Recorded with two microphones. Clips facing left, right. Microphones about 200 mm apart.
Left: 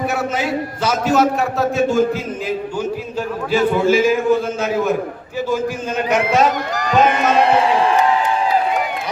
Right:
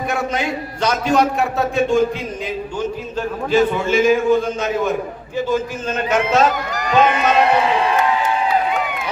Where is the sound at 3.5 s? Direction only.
5° left (ahead or behind).